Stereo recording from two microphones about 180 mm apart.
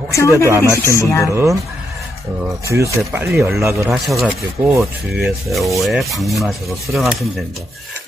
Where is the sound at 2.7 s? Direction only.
15° right (ahead or behind).